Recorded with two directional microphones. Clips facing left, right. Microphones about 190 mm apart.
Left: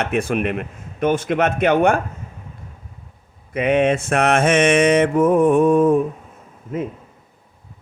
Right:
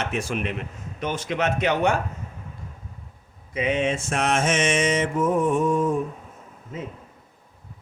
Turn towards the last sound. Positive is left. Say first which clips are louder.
# left 9 dB
turn(degrees=60)  # may be behind; listen again after turning